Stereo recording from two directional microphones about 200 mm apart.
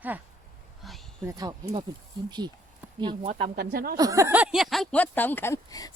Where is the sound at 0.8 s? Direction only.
Centre (ahead or behind).